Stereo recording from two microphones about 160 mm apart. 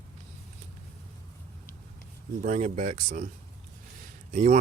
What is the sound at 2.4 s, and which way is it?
Speech, 50° right (ahead or behind).